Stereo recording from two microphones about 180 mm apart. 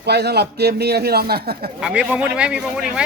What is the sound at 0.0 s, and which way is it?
A man's voice, 65° right (ahead or behind).